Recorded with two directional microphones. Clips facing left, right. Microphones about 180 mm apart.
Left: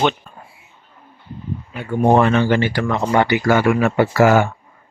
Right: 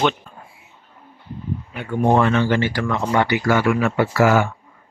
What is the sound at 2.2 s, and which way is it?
Speech, 50° left (ahead or behind).